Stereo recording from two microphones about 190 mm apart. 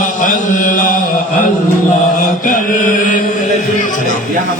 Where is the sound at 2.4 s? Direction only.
45° left (ahead or behind).